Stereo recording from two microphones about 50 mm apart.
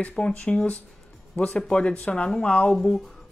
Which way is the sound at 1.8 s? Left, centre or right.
Left.